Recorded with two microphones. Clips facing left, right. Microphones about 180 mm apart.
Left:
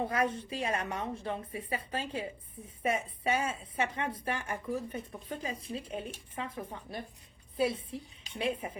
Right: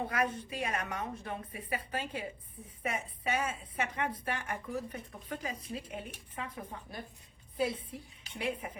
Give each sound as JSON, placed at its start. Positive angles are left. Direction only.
{"t": 0.1, "sound": "speech", "side_deg": 25}